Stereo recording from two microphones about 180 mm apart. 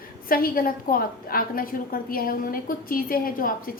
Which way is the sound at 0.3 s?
55° left (ahead or behind).